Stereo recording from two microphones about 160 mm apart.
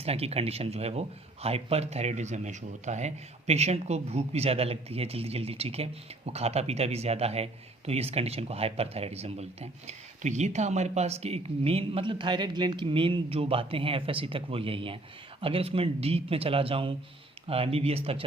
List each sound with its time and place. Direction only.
0.0 s speech: 40° right (ahead or behind)